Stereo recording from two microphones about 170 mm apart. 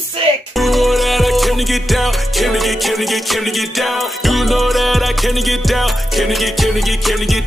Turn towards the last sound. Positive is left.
turn(degrees=0)  # may be behind; listen again after turning